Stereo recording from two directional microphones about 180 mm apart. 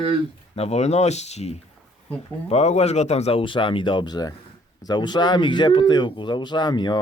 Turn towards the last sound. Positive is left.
turn(degrees=25)  # may be behind; listen again after turning